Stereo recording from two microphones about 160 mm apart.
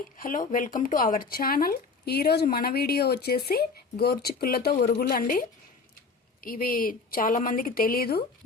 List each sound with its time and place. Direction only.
0.2 s a woman's voice: 60° left (ahead or behind)